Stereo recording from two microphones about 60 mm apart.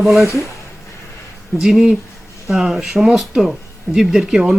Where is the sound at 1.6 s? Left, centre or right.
Centre.